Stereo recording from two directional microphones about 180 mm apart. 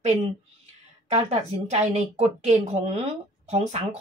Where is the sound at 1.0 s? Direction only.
40° right (ahead or behind).